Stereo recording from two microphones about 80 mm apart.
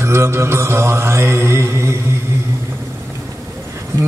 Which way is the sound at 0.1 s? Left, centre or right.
Right.